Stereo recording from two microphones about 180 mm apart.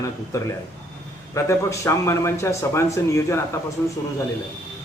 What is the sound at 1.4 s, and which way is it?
Speech, 15° left (ahead or behind).